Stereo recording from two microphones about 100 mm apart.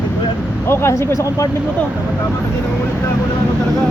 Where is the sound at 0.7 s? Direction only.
25° left (ahead or behind).